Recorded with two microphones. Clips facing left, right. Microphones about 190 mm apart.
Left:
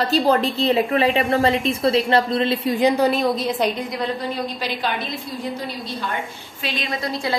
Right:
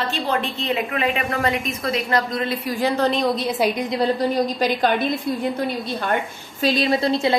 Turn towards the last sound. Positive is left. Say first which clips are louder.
# right 6 dB
turn(degrees=-25)  # may be behind; listen again after turning